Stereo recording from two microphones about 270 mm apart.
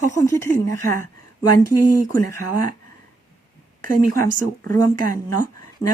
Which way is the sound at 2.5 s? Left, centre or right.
Left.